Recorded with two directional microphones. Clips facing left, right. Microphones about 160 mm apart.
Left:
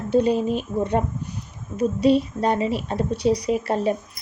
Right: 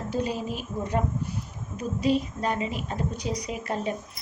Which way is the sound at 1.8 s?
30° left (ahead or behind).